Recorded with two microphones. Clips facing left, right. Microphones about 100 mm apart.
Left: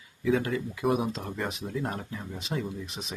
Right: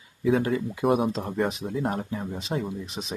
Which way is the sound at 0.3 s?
35° right (ahead or behind).